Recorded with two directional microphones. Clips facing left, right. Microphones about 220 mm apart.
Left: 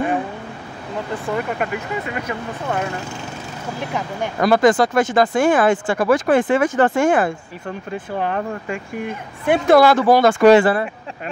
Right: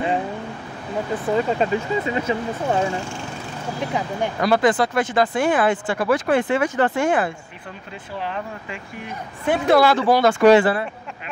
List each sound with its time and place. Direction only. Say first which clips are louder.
1.3 s speech: right 4 dB; 25° right (ahead or behind)
4.4 s speech: left 4 dB; 45° left (ahead or behind)